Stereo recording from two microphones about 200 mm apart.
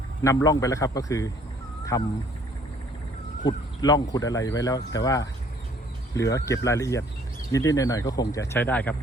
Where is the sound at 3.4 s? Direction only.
20° left (ahead or behind).